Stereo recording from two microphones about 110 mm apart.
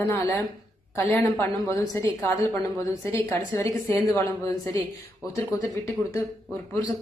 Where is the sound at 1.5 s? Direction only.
30° left (ahead or behind).